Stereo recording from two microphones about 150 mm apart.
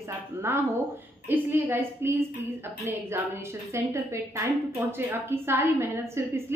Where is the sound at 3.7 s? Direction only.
20° right (ahead or behind).